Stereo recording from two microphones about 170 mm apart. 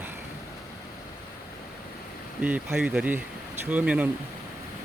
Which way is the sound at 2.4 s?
10° right (ahead or behind).